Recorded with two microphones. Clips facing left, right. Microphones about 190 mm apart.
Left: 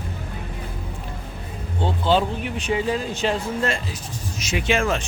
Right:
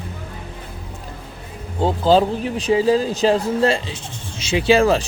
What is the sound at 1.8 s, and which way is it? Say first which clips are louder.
Speech: right 5 dB; 40° right (ahead or behind).